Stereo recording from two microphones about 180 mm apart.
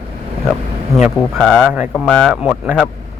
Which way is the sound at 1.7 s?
10° right (ahead or behind).